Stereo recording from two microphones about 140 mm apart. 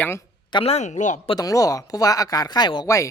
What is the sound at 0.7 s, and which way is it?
Speech, 55° left (ahead or behind).